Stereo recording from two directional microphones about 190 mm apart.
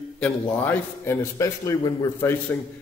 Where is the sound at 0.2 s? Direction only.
10° left (ahead or behind).